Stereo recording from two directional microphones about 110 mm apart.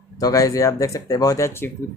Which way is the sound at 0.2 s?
35° left (ahead or behind).